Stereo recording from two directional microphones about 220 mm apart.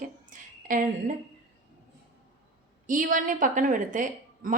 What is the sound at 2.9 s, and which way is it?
A woman's voice, 35° right (ahead or behind).